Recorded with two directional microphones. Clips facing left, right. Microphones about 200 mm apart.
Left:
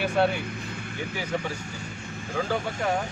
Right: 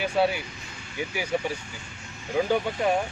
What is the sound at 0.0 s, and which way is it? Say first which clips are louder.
Speech: even; 5° right (ahead or behind).